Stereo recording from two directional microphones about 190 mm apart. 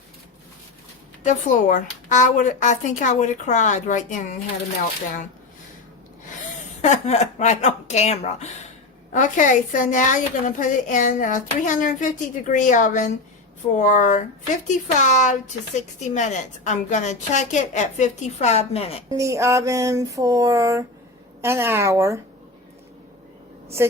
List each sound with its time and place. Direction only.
1.2 s speech: 40° left (ahead or behind)
6.8 s speech: 35° left (ahead or behind)
19.0 s a sound: 15° right (ahead or behind)
23.6 s speech: 15° right (ahead or behind)